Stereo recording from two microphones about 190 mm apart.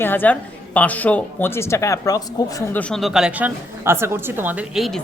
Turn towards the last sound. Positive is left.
turn(degrees=0)  # may be behind; listen again after turning